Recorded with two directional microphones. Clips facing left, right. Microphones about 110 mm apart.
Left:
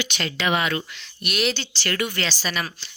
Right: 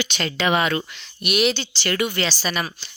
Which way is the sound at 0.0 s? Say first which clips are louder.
Right 3 dB; 30° right (ahead or behind).